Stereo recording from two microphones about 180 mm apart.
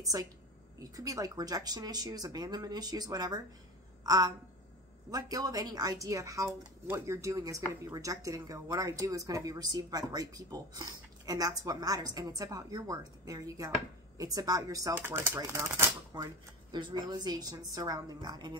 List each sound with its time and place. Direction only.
0.0 s a woman's voice: 20° right (ahead or behind)